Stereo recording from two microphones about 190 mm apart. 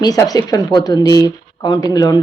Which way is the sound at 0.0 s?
20° left (ahead or behind).